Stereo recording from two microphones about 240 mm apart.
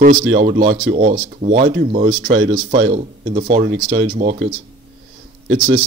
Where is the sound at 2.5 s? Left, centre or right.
Right.